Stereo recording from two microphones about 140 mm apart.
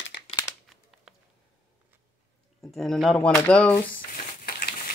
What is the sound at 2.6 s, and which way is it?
Speech, centre (ahead or behind).